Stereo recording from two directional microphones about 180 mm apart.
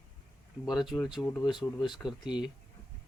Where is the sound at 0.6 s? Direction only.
Centre (ahead or behind).